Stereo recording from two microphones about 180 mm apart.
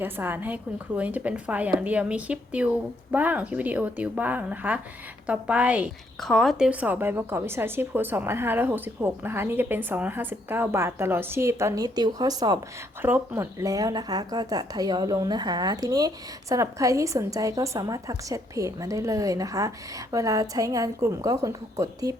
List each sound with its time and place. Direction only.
0.0 s a woman's voice: 10° right (ahead or behind)
13.0 s speech: 10° right (ahead or behind)